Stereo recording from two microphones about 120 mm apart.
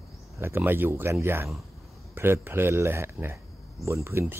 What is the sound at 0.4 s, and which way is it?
Speech, 20° right (ahead or behind).